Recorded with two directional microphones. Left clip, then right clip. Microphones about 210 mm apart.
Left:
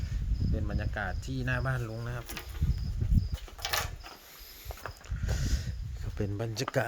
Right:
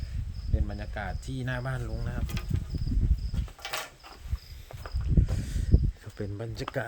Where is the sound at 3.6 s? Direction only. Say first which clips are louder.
Left 3 dB; 35° left (ahead or behind).